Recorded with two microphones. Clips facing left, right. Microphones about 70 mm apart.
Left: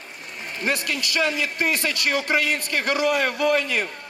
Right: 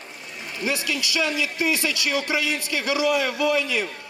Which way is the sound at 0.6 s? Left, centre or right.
Left.